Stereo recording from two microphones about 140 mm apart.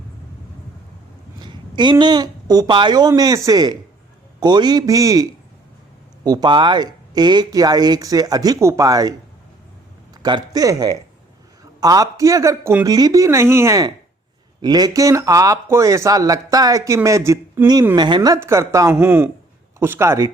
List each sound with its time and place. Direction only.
1.4 s a woman's voice: 30° right (ahead or behind)
10.2 s speech: 30° right (ahead or behind)